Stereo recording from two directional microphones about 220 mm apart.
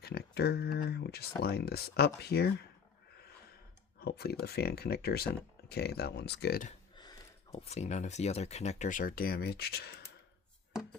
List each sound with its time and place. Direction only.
0.0 s speech: 45° left (ahead or behind)
4.0 s speech: 45° left (ahead or behind)
6.9 s speech: 20° left (ahead or behind); by 10.1 s 45° left (ahead or behind)